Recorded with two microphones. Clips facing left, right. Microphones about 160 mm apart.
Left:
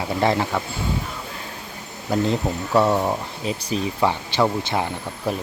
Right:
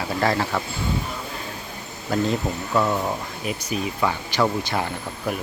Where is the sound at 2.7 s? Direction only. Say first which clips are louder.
Left 4 dB; 30° left (ahead or behind).